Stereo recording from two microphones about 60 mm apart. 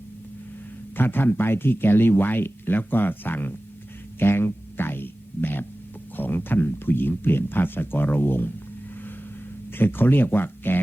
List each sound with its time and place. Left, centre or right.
0.9 s speech: left
4.2 s a sound: left
6.1 s speech: left
9.7 s speech: left